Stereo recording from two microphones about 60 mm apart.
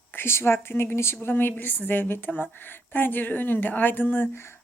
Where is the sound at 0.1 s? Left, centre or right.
Left.